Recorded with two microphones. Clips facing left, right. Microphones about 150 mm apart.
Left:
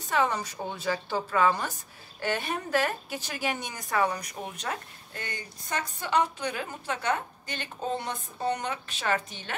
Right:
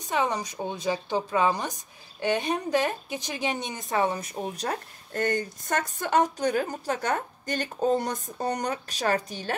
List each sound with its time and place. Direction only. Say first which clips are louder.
0.0 s a woman's voice: even; 15° right (ahead or behind); by 9.6 s 40° right (ahead or behind)